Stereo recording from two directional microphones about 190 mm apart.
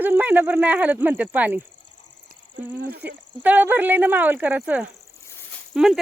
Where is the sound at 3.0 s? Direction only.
10° right (ahead or behind).